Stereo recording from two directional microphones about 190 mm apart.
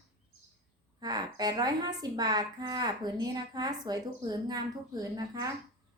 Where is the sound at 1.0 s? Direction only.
20° right (ahead or behind).